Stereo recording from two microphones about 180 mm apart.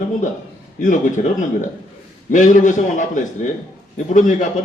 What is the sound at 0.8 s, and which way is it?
A man's voice, 45° left (ahead or behind).